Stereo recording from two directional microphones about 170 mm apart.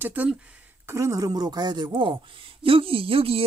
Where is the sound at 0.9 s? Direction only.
20° right (ahead or behind).